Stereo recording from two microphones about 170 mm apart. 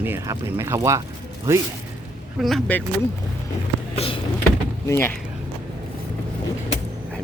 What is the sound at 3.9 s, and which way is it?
Vehicle, 35° left (ahead or behind).